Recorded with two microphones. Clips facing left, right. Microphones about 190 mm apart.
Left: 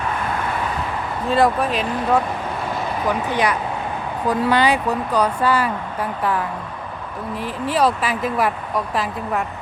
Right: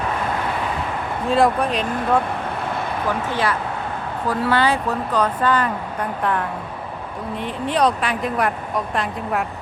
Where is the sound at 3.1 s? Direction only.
15° left (ahead or behind).